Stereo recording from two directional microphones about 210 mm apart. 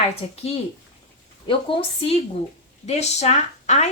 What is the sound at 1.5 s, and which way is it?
A woman's voice, 25° left (ahead or behind).